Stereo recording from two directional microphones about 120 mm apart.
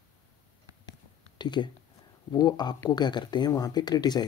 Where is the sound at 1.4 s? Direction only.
40° left (ahead or behind).